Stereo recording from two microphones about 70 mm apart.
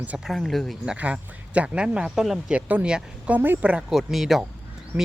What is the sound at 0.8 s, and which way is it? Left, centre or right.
Speech, centre.